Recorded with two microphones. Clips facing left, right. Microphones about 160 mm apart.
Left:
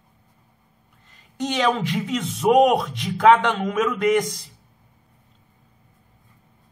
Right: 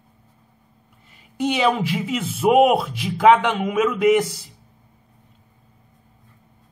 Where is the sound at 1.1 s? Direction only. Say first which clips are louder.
Right 4 dB; 10° right (ahead or behind).